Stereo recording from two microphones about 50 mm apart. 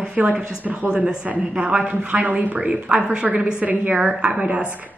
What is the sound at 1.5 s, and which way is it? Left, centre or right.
Speech, right.